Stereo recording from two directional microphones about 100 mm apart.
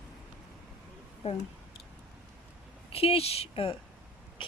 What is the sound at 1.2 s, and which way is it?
Speech, 90° left.